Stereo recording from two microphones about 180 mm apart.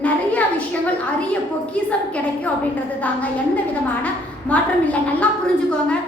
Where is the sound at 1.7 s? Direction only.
5° left (ahead or behind).